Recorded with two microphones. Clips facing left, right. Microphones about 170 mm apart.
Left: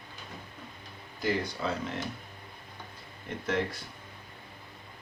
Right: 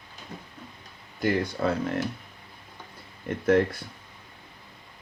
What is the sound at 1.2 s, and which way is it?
Speech, 55° right (ahead or behind).